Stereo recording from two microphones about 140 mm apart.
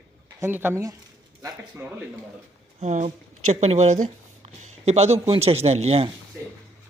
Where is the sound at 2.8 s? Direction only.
55° right (ahead or behind).